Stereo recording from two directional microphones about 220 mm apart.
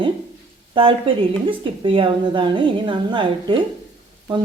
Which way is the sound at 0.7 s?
25° right (ahead or behind).